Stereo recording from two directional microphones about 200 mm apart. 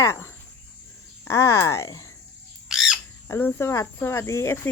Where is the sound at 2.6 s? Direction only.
5° right (ahead or behind).